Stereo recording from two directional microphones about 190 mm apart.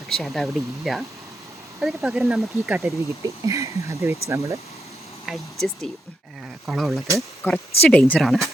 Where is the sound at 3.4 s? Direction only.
15° right (ahead or behind).